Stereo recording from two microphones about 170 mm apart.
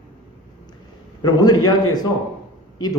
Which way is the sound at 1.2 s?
25° left (ahead or behind).